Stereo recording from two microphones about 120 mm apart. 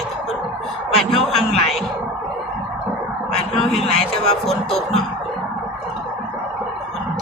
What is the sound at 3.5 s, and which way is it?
Speech, centre (ahead or behind).